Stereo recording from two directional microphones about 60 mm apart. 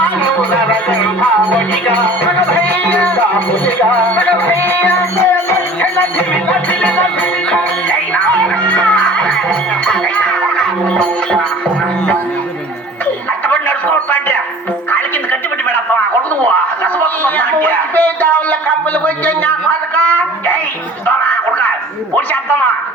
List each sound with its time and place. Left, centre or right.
0.9 s music: left
13.5 s a sound: left
16.8 s speech: left